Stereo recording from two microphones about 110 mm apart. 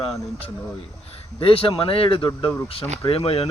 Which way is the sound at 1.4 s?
55° left (ahead or behind).